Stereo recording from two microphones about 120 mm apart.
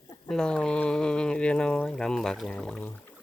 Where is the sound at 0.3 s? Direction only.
5° left (ahead or behind).